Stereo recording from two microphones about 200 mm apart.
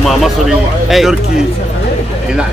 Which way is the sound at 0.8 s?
Centre (ahead or behind).